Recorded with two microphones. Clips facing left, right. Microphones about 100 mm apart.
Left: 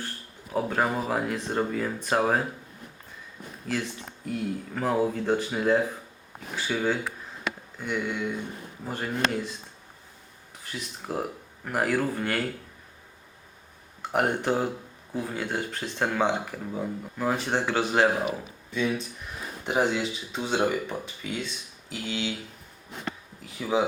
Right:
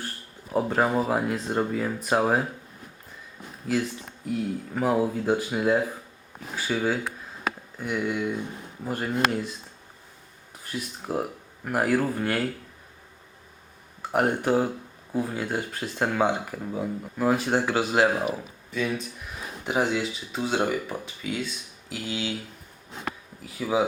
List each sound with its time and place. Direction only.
0.5 s speech: 10° right (ahead or behind)
3.6 s speech: 10° right (ahead or behind)
10.7 s speech: 5° right (ahead or behind)
14.0 s speech: centre (ahead or behind)
23.6 s speech: 5° right (ahead or behind)